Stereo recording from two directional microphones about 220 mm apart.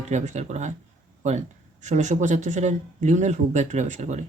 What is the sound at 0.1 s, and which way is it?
Speech, 30° right (ahead or behind).